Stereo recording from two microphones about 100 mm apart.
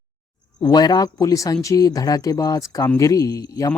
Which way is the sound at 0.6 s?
45° left (ahead or behind).